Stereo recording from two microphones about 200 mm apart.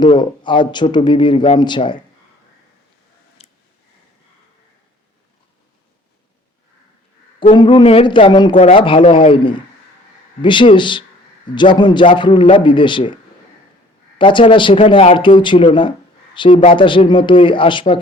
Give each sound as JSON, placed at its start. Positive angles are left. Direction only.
{"t": 0.0, "sound": "a man's voice", "side_deg": 25}
{"t": 3.4, "sound": "a sound", "side_deg": 30}
{"t": 7.5, "sound": "a man's voice", "side_deg": 25}
{"t": 14.2, "sound": "a man's voice", "side_deg": 25}